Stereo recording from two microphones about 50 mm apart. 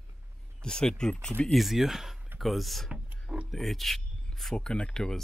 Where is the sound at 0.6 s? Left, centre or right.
Centre.